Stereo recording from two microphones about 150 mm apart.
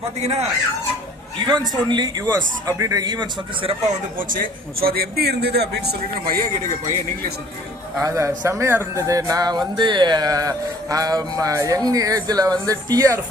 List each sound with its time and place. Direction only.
0.2 s speech: 45° right (ahead or behind)
1.5 s speech: 30° right (ahead or behind)
4.2 s a man's voice: 70° right (ahead or behind); by 6.3 s 90° right
7.9 s speech: 20° right (ahead or behind)